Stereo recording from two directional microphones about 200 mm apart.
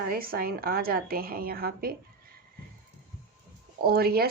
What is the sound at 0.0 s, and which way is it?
Speech, 45° right (ahead or behind).